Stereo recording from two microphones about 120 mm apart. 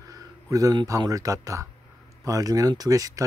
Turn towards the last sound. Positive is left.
turn(degrees=-30)  # may be behind; listen again after turning